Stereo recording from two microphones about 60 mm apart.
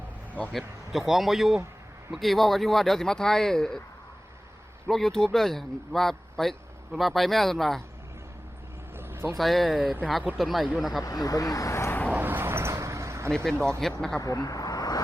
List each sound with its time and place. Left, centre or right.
0.5 s speech: centre
4.9 s speech: centre
9.0 s vehicle: right
9.4 s speech: centre
11.0 s speech: left
11.7 s vehicle: left
12.1 s vehicle: right
13.3 s speech: centre
14.2 s speech: left